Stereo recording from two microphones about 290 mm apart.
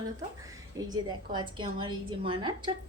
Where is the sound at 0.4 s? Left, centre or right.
Centre.